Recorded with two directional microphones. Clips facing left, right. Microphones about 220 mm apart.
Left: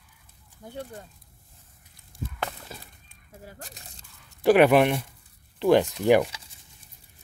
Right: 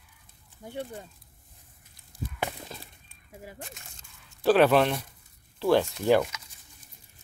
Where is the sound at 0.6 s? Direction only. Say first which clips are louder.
Right 1 dB; 15° right (ahead or behind).